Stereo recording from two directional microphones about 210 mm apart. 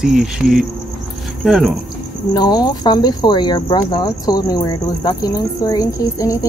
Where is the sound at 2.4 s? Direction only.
20° left (ahead or behind).